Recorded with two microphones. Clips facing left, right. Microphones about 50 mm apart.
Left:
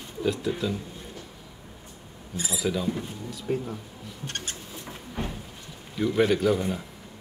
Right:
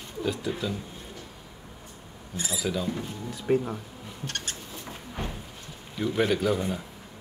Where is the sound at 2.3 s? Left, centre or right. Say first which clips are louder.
Left 1 dB; centre.